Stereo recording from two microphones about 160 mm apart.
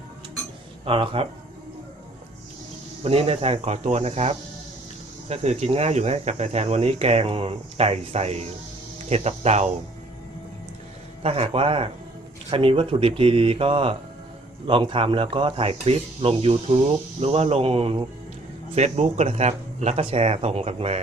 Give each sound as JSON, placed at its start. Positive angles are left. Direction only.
{"t": 0.9, "sound": "speech", "side_deg": -35}
{"t": 3.0, "sound": "speech", "side_deg": -40}
{"t": 11.2, "sound": "speech", "side_deg": -40}